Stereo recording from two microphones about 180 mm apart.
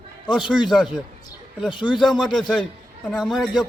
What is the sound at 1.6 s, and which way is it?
Speech, 25° left (ahead or behind).